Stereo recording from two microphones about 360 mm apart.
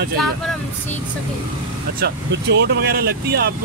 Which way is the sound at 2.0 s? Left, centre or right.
Right.